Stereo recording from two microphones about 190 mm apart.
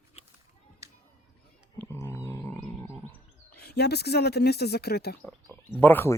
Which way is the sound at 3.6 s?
60° left (ahead or behind).